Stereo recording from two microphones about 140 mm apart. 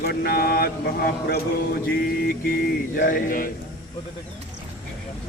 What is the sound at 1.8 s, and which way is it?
Mantra, 90° left.